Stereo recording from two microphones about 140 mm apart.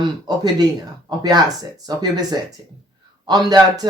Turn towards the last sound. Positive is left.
turn(degrees=-30)  # may be behind; listen again after turning